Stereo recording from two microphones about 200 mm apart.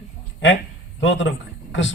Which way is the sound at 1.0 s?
65° left (ahead or behind).